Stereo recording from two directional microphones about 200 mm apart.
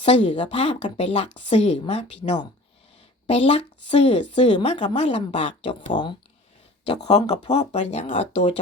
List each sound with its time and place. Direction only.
0.0 s a woman's voice: 30° left (ahead or behind)
3.2 s a woman's voice: 30° left (ahead or behind)
5.9 s a woman's voice: 25° left (ahead or behind)